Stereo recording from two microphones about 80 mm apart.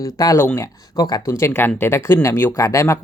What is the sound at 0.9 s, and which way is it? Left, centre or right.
Speech, left.